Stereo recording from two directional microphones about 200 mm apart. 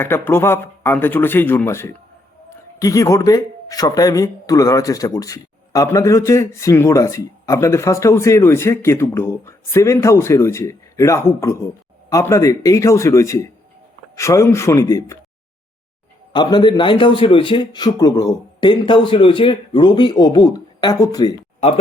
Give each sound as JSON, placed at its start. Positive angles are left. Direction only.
{"t": 0.0, "sound": "a man's voice", "side_deg": 10}
{"t": 16.3, "sound": "a man's voice", "side_deg": 20}